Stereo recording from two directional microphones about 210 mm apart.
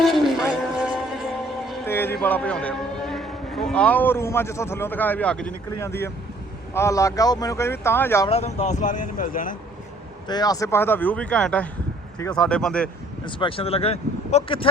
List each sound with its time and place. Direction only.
0.0 s a sound: centre (ahead or behind)
1.6 s music: centre (ahead or behind)
1.9 s a man's voice: 10° left (ahead or behind)
8.3 s speech: 30° left (ahead or behind)
10.2 s speech: 20° left (ahead or behind)
13.2 s speech: 25° left (ahead or behind)